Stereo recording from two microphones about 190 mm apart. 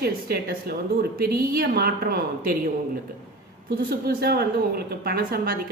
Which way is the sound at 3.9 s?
55° right (ahead or behind).